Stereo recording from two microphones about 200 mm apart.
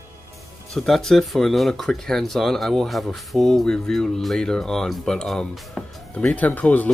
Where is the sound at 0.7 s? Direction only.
Centre (ahead or behind).